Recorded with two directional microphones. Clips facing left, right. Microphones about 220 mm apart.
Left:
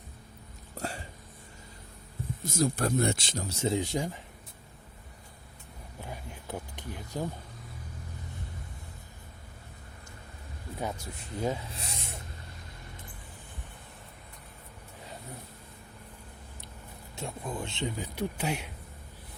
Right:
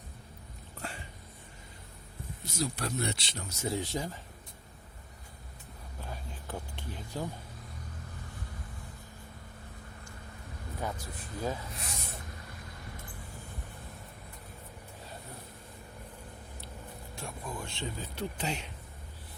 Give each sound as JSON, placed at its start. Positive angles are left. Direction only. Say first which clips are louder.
{"t": 0.8, "sound": "hiccup", "louder": "left 6 dB", "side_deg": 40}
{"t": 2.4, "sound": "speech", "louder": "left 6 dB", "side_deg": 50}
{"t": 3.4, "sound": "speech", "louder": "left 5 dB", "side_deg": 30}
{"t": 3.8, "sound": "speech", "louder": "left 4 dB", "side_deg": 15}
{"t": 6.0, "sound": "a sound", "louder": "left 2 dB", "side_deg": 15}
{"t": 10.8, "sound": "speech", "louder": "left 2 dB", "side_deg": 25}
{"t": 17.2, "sound": "speech", "louder": "left 5 dB", "side_deg": 20}